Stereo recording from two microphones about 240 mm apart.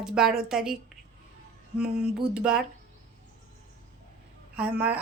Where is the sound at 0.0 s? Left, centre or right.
Centre.